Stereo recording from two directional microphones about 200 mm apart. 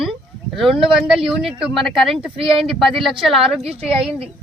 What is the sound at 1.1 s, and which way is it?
Speech, centre (ahead or behind).